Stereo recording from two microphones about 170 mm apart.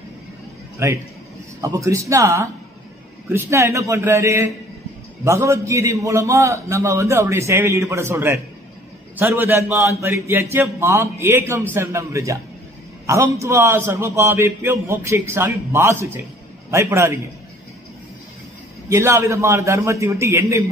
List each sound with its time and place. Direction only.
0.8 s a man's voice: 15° right (ahead or behind)
18.9 s a man's voice: 15° right (ahead or behind)